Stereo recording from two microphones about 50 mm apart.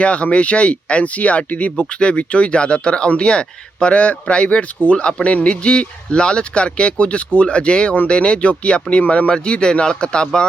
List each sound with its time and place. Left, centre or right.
0.0 s speech: left